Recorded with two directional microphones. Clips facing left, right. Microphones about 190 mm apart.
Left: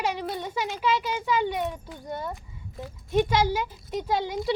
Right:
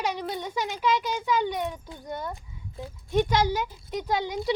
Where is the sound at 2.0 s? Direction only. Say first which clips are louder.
Left 1 dB; 5° left (ahead or behind).